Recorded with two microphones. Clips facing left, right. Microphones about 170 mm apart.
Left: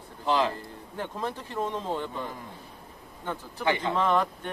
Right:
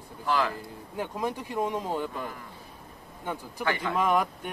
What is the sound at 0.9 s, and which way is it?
A man's voice, 10° right (ahead or behind).